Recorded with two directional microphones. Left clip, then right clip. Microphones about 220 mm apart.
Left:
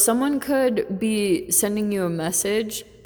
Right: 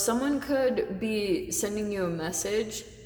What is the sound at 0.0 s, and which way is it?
A woman's voice, 40° left (ahead or behind).